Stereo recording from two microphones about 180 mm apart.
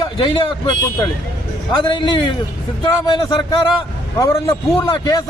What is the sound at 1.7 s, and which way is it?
A man's voice, 25° left (ahead or behind).